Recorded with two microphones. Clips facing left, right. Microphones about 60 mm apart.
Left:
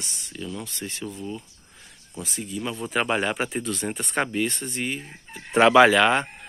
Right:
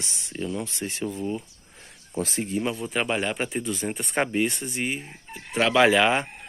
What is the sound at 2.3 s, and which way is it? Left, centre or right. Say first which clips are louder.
Speech: right 5 dB; right.